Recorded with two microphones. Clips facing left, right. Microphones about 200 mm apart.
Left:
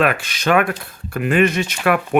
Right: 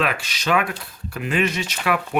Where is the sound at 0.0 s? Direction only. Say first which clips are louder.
Left 6 dB; 55° left (ahead or behind).